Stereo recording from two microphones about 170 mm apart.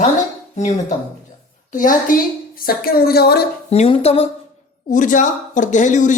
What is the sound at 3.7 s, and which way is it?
Speech, 35° left (ahead or behind).